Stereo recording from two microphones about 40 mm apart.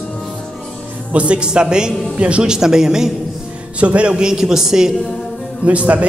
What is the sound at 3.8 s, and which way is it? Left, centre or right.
Speech, right.